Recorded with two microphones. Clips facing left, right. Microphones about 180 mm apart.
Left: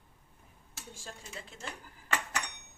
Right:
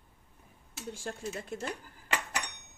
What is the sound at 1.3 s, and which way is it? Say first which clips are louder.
Speech: right 8 dB; 45° right (ahead or behind).